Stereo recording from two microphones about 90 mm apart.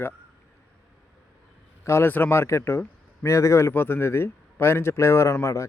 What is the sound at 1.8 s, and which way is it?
A man's voice, 30° left (ahead or behind).